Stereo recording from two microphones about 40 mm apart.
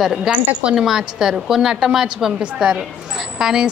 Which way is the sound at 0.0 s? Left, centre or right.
Centre.